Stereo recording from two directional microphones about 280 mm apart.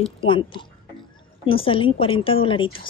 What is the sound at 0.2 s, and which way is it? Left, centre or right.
A woman's voice, centre.